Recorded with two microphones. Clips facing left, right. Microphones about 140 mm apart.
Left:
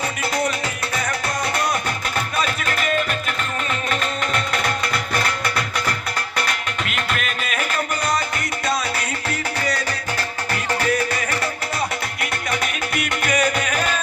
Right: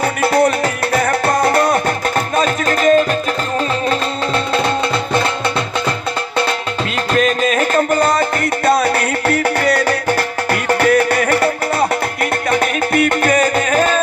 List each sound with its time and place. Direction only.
0.0 s music: 60° right (ahead or behind); by 3.2 s 35° right (ahead or behind)
5.1 s music: 25° right (ahead or behind)
6.9 s music: 35° right (ahead or behind)